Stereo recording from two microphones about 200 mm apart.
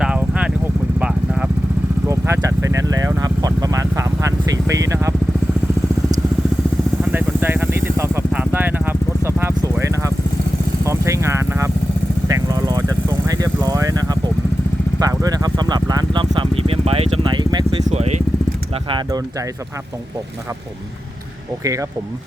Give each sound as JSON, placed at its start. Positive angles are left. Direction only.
{"t": 0.0, "sound": "vehicle", "side_deg": -5}
{"t": 7.0, "sound": "vehicle", "side_deg": -10}
{"t": 17.8, "sound": "vehicle", "side_deg": -35}
{"t": 18.9, "sound": "speech", "side_deg": -20}
{"t": 21.6, "sound": "speech", "side_deg": -15}